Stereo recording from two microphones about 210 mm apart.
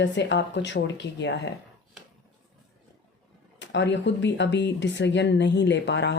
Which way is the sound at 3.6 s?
60° left (ahead or behind).